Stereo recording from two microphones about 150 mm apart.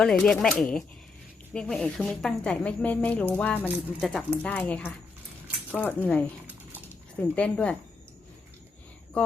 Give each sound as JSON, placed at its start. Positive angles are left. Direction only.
{"t": 0.0, "sound": "a woman's voice", "side_deg": 5}
{"t": 6.5, "sound": "dog", "side_deg": -15}
{"t": 7.2, "sound": "a woman's voice", "side_deg": 10}